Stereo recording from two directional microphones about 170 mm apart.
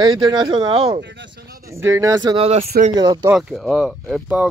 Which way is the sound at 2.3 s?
35° right (ahead or behind).